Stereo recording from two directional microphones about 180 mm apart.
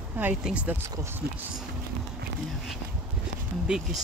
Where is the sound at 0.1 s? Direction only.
10° right (ahead or behind).